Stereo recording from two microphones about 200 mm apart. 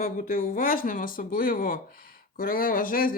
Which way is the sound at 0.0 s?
45° left (ahead or behind).